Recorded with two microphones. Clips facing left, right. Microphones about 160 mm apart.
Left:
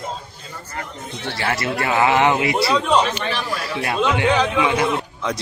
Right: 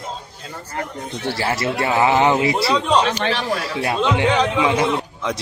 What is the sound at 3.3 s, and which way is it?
Speech, 30° right (ahead or behind).